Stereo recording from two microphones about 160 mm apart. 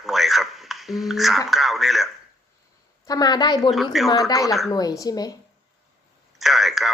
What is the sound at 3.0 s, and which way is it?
Speech, 25° left (ahead or behind).